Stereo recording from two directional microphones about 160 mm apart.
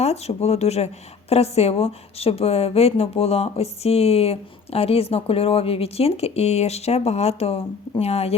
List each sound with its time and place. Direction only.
0.0 s a woman's voice: 40° left (ahead or behind)